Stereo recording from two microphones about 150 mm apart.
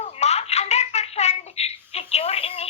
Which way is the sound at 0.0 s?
45° left (ahead or behind).